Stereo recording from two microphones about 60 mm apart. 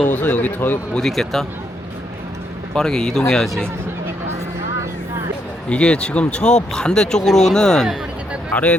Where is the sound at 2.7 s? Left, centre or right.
Centre.